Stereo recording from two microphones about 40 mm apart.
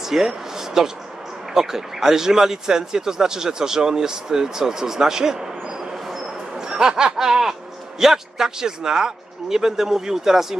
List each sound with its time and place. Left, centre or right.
0.0 s a sound: centre
1.5 s speech: centre
6.6 s snicker: centre
8.0 s speech: centre